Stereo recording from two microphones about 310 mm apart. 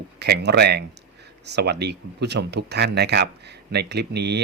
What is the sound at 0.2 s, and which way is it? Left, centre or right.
Speech, right.